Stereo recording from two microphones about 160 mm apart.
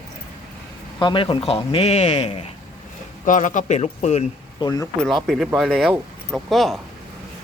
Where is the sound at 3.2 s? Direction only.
55° left (ahead or behind).